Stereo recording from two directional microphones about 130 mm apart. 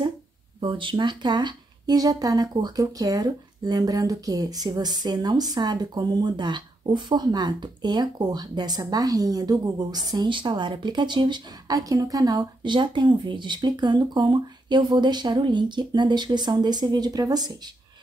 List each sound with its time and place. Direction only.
0.6 s a woman's voice: 40° right (ahead or behind)